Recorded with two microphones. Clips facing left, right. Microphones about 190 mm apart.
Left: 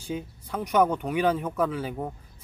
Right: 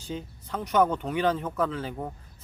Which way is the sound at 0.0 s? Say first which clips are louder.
Left 3 dB; 10° left (ahead or behind).